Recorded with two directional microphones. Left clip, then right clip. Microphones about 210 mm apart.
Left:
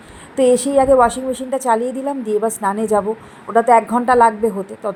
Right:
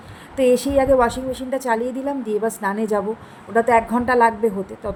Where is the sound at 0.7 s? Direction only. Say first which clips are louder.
Left 4 dB; 5° left (ahead or behind).